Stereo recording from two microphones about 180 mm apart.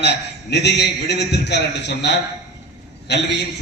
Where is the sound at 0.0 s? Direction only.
70° left (ahead or behind).